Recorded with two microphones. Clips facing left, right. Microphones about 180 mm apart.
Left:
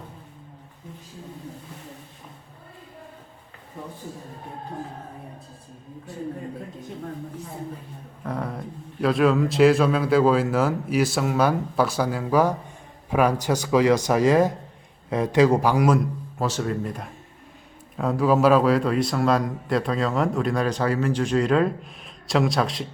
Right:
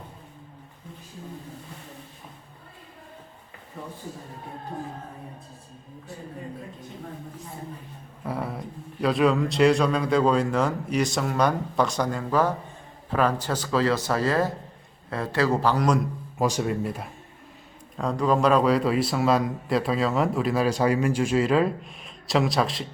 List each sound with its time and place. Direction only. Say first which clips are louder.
8.2 s a man's voice: left 1 dB; 5° right (ahead or behind)
16.4 s speech: right 1 dB; 10° right (ahead or behind)
17.9 s a man's voice: left 3 dB; 5° left (ahead or behind)